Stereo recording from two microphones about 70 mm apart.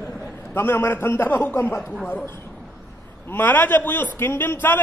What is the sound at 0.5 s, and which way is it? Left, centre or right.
A man's voice, left.